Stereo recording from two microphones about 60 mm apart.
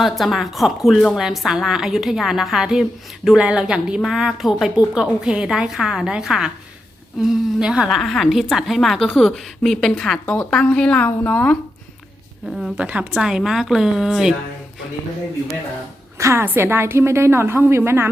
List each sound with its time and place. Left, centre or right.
0.0 s a woman's voice: centre
10.2 s speech: centre
11.2 s speech: left
12.7 s a woman's voice: right
13.2 s a woman's voice: centre
16.1 s a woman's voice: right